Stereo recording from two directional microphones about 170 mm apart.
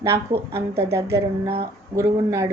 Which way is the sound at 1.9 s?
20° right (ahead or behind).